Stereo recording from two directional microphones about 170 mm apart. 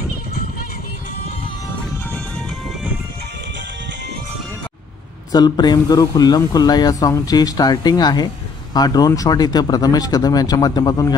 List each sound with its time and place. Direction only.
5.3 s speech: 25° left (ahead or behind)